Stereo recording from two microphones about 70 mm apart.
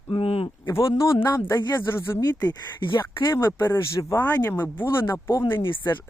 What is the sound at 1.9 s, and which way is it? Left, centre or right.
Speech, left.